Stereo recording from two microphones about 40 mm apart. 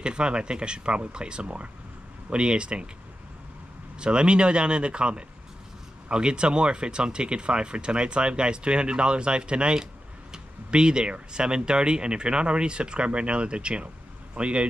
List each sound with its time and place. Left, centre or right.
0.0 s speech: right
4.0 s speech: right